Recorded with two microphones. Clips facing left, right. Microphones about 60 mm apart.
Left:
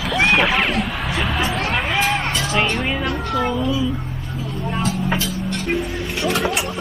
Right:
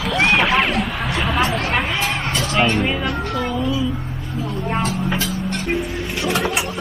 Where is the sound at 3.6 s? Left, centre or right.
Centre.